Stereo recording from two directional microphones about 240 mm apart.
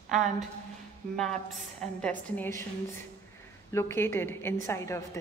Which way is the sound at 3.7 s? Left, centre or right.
Centre.